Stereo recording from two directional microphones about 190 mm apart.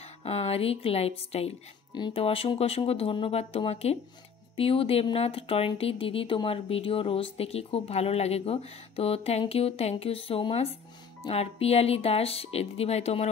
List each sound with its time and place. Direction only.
0.2 s speech: 35° left (ahead or behind)